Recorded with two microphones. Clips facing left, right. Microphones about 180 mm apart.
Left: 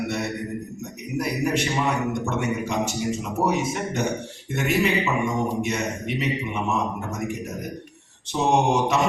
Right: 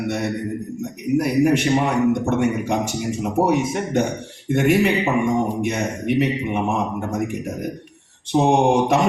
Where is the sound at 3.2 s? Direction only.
50° right (ahead or behind).